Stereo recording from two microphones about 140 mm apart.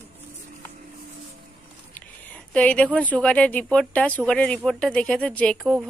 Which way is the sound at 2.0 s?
15° left (ahead or behind).